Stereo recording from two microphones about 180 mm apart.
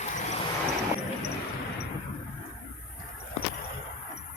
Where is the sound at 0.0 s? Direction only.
40° left (ahead or behind).